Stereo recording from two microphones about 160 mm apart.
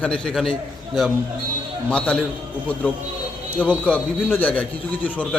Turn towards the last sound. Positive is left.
turn(degrees=10)  # may be behind; listen again after turning